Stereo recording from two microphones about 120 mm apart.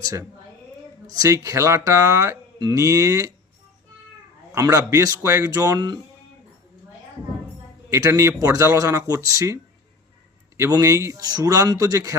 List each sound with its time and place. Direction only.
0.0 s speech: 25° right (ahead or behind)
4.5 s speech: 25° right (ahead or behind)
7.9 s speech: 25° right (ahead or behind)
10.6 s speech: 25° right (ahead or behind)